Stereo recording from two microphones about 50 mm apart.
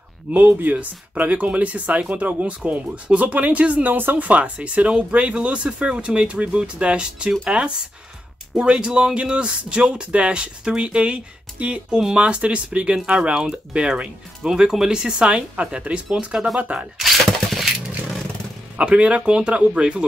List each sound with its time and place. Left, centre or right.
0.3 s speech: right
4.3 s speech: right
17.0 s a sound: centre
18.8 s speech: right